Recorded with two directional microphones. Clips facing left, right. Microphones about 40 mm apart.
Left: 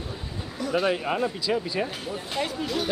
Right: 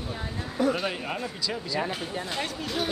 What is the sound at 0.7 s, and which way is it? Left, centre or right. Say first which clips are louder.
Speech: left 6 dB; centre.